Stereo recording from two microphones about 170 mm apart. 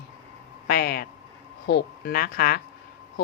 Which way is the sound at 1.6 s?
70° left (ahead or behind).